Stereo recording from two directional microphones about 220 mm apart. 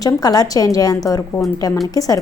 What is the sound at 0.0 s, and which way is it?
A woman's voice, 15° left (ahead or behind).